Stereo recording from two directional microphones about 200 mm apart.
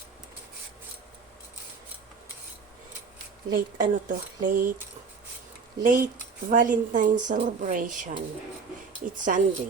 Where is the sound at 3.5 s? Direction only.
40° right (ahead or behind).